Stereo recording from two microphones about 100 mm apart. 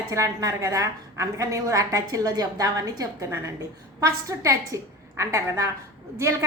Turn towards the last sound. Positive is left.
turn(degrees=-30)  # may be behind; listen again after turning